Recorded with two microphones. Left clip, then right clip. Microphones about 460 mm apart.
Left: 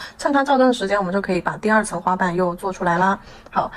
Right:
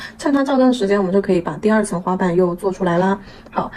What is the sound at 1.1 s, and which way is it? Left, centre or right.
Speech, centre.